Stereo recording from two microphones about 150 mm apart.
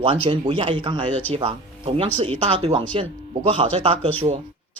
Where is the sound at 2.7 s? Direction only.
30° right (ahead or behind).